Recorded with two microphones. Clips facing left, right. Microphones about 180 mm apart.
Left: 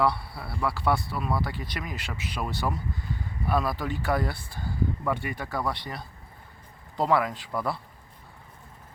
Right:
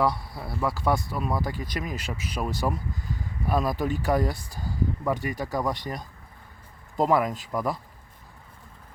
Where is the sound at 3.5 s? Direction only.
15° right (ahead or behind).